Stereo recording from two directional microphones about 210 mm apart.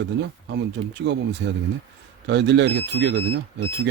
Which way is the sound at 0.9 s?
60° right (ahead or behind).